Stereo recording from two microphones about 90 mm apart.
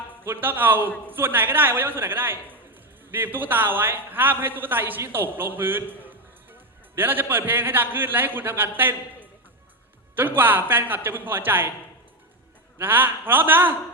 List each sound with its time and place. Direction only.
0.3 s a man's voice: 20° right (ahead or behind)
10.2 s a man's voice: 25° right (ahead or behind)
12.8 s a man's voice: 25° right (ahead or behind)